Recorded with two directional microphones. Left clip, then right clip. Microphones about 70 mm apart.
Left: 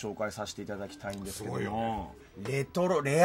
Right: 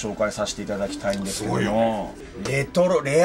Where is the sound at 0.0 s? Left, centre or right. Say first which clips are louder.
Right 11 dB; left.